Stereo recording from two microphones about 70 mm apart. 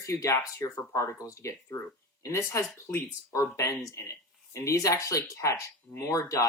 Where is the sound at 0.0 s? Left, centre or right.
Left.